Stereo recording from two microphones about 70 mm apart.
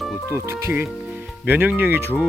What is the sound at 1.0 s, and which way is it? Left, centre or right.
Music, right.